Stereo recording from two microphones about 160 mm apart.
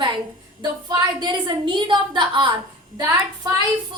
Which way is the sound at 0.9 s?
25° right (ahead or behind).